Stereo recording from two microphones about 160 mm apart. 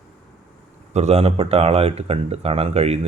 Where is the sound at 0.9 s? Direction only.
45° right (ahead or behind).